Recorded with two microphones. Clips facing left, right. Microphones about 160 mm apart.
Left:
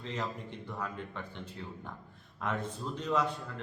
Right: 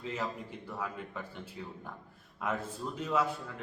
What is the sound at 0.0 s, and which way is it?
A man's voice, 5° right (ahead or behind).